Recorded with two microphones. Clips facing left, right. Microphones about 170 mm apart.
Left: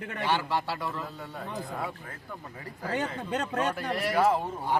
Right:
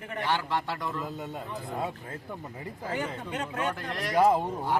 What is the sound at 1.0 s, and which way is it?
Speech, 20° right (ahead or behind).